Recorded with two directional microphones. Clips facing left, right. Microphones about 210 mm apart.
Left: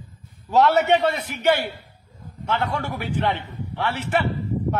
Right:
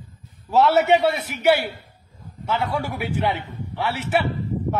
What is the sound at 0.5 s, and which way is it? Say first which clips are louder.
A man's voice: right 1 dB; 5° right (ahead or behind).